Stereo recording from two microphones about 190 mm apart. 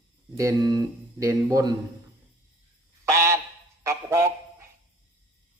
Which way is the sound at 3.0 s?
15° right (ahead or behind).